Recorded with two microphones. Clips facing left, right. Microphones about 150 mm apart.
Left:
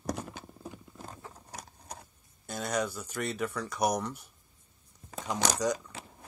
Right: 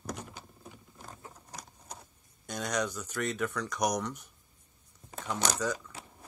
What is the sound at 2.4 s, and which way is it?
Speech, 5° left (ahead or behind).